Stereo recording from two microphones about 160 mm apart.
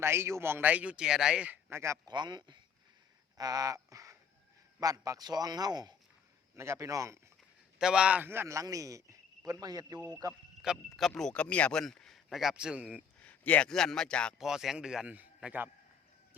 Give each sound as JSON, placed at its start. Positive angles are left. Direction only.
{"t": 0.0, "sound": "a man's voice", "side_deg": -15}
{"t": 7.8, "sound": "a man's voice", "side_deg": -5}
{"t": 10.6, "sound": "speech", "side_deg": 0}
{"t": 13.2, "sound": "speech", "side_deg": 10}